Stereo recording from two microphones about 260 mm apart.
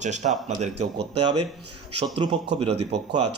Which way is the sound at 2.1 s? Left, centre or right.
Right.